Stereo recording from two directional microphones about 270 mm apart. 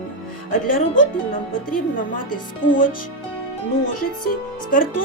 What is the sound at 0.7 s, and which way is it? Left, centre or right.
A woman's voice, left.